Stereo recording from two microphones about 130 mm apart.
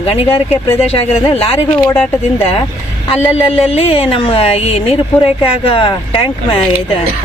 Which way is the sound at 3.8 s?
45° left (ahead or behind).